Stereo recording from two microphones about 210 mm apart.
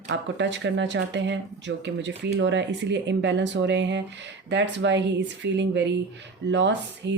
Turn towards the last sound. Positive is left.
turn(degrees=-60)  # may be behind; listen again after turning